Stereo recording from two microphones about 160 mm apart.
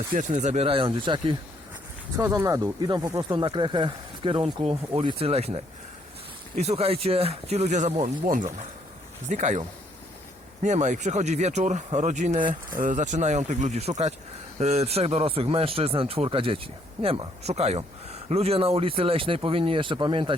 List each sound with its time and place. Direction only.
0.1 s speech: 50° right (ahead or behind); by 1.4 s 30° right (ahead or behind)
2.1 s speech: 15° right (ahead or behind)